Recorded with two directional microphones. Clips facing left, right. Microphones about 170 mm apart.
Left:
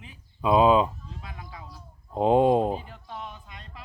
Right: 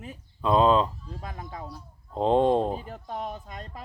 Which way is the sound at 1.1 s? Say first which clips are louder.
Right 5 dB; 45° right (ahead or behind).